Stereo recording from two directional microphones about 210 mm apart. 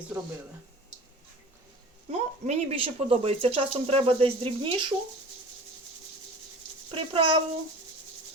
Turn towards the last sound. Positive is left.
turn(degrees=-25)  # may be behind; listen again after turning